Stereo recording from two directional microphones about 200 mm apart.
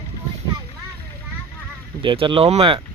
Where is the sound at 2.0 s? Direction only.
25° right (ahead or behind).